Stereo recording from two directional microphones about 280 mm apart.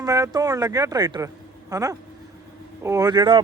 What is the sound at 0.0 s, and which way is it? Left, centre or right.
Speech, centre.